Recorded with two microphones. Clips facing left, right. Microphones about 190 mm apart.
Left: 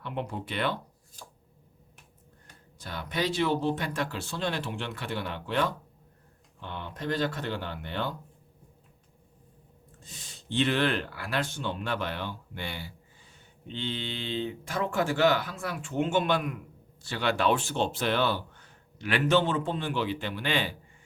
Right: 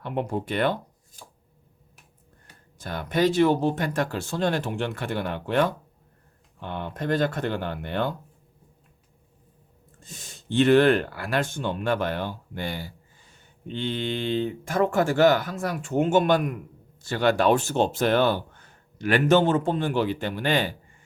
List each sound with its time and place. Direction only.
0.0 s speech: 45° right (ahead or behind)
2.7 s speech: 50° right (ahead or behind)
10.0 s speech: 45° right (ahead or behind)